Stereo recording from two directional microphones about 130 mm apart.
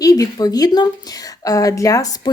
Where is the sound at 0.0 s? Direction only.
25° left (ahead or behind).